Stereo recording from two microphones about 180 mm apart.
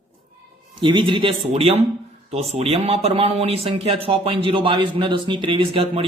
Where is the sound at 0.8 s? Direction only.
25° right (ahead or behind).